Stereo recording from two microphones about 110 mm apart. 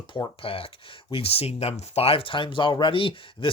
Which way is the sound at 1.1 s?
60° left (ahead or behind).